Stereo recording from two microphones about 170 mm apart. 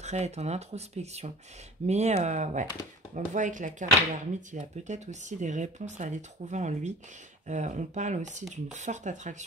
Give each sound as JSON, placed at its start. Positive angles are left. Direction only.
{"t": 0.0, "sound": "speech", "side_deg": -40}